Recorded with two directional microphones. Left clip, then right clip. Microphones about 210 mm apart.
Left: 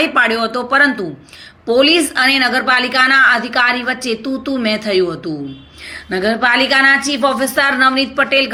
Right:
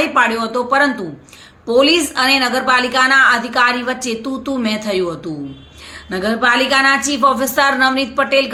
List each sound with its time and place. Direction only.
0.0 s a woman's voice: 10° left (ahead or behind)